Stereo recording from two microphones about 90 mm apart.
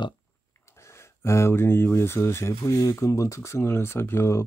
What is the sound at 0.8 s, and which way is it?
Speech, 30° left (ahead or behind).